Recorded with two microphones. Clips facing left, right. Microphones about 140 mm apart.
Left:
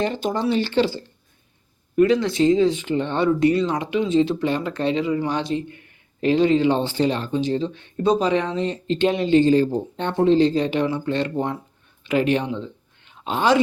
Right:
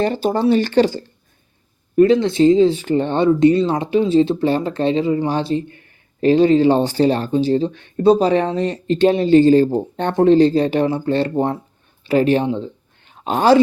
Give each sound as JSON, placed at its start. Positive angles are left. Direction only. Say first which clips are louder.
{"t": 0.0, "sound": "speech", "louder": "right 5 dB", "side_deg": -35}
{"t": 2.0, "sound": "speech", "louder": "right 5 dB", "side_deg": -25}
{"t": 2.8, "sound": "speech", "louder": "right 5 dB", "side_deg": -40}
{"t": 3.2, "sound": "speech", "louder": "right 5 dB", "side_deg": -25}
{"t": 7.7, "sound": "speech", "louder": "right 5 dB", "side_deg": -55}
{"t": 8.0, "sound": "speech", "louder": "right 6 dB", "side_deg": -35}
{"t": 9.7, "sound": "speech", "louder": "right 5 dB", "side_deg": -55}
{"t": 10.3, "sound": "speech", "louder": "right 5 dB", "side_deg": -35}